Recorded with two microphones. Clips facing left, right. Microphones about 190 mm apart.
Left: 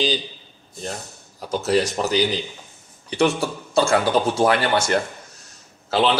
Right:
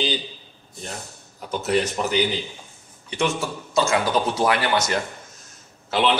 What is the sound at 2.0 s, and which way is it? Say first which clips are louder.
A man's voice: left 2 dB; 35° left (ahead or behind).